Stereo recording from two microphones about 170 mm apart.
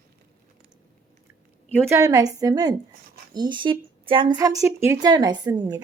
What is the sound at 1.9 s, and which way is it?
Speech, 20° right (ahead or behind).